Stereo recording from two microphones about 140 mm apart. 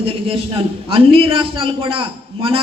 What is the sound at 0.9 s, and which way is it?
A man's voice, 40° right (ahead or behind).